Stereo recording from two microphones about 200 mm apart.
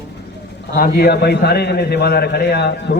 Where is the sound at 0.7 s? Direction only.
50° left (ahead or behind).